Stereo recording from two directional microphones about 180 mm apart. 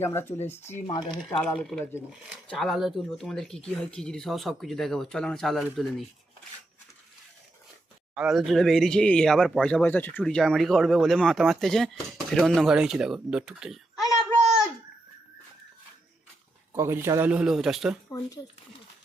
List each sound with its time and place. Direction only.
0.0 s speech: 15° left (ahead or behind)
0.9 s speech: 25° left (ahead or behind)
1.4 s speech: 5° left (ahead or behind)
8.1 s speech: 5° right (ahead or behind)
16.7 s speech: 15° right (ahead or behind)